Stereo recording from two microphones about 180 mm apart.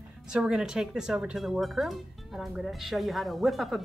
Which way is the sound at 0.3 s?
5° right (ahead or behind).